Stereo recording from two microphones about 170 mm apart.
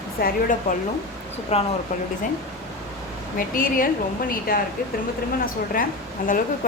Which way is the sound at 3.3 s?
55° left (ahead or behind).